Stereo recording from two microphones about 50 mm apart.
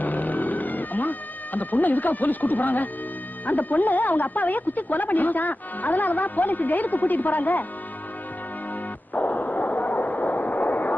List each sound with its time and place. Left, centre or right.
0.0 s music: left
1.5 s speech: left
9.1 s a sound: left